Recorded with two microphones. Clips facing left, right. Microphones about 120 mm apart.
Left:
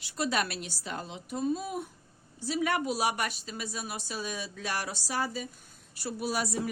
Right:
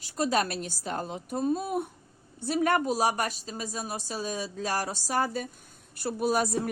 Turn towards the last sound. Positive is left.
turn(degrees=-45)  # may be behind; listen again after turning